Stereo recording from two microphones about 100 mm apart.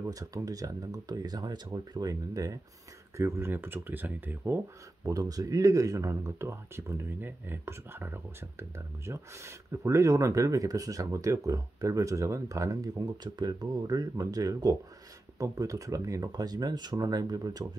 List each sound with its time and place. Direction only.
0.1 s speech: 35° right (ahead or behind); by 4.6 s 20° right (ahead or behind)
5.0 s speech: 35° right (ahead or behind)